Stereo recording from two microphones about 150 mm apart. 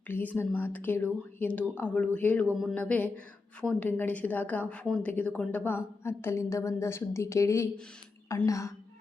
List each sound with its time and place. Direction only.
0.1 s a woman's voice: 10° left (ahead or behind)